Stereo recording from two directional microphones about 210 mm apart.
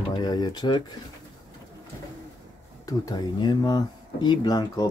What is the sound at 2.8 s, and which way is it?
Speech, 15° left (ahead or behind).